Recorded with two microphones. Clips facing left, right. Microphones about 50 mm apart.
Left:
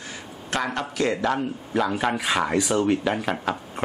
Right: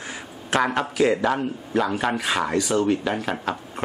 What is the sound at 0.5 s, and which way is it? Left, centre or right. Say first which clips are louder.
Speech: right 5 dB; centre.